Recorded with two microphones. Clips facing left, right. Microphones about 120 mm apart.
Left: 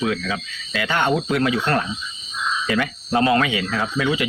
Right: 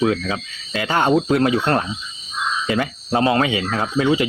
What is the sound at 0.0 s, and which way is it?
Speech, 30° right (ahead or behind).